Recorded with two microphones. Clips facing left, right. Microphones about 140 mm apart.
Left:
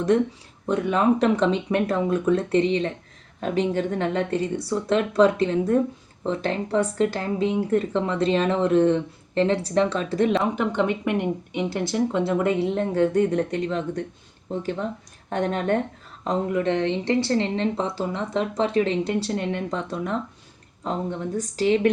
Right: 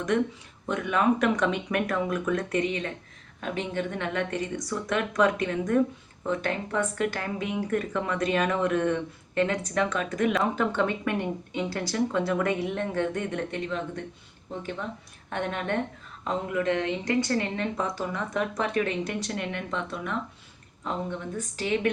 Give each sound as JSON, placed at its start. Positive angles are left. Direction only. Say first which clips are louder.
{"t": 0.1, "sound": "speech", "louder": "left 4 dB", "side_deg": 30}
{"t": 10.5, "sound": "speech", "louder": "left 3 dB", "side_deg": 15}
{"t": 21.3, "sound": "speech", "louder": "left 8 dB", "side_deg": 35}